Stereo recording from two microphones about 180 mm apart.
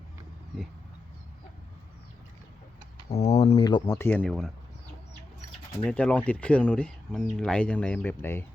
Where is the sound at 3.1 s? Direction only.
35° left (ahead or behind).